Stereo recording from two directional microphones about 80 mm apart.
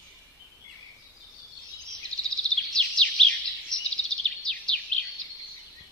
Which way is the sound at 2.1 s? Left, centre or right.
Right.